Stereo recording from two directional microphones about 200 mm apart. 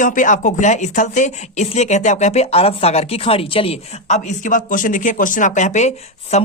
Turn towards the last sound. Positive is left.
turn(degrees=35)  # may be behind; listen again after turning